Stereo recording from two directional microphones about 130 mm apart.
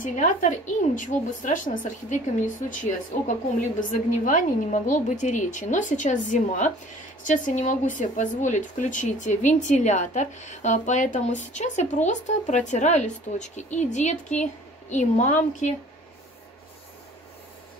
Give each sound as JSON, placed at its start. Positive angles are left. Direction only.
{"t": 0.0, "sound": "a woman's voice", "side_deg": 85}
{"t": 3.9, "sound": "a woman's voice", "side_deg": 90}